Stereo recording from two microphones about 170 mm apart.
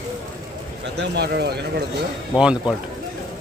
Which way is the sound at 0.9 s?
80° right.